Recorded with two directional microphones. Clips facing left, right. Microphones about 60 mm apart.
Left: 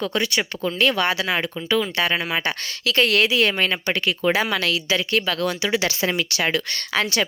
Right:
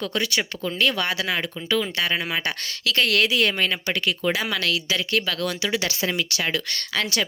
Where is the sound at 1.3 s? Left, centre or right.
Left.